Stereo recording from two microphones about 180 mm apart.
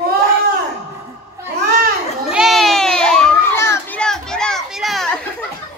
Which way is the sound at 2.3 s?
Centre (ahead or behind).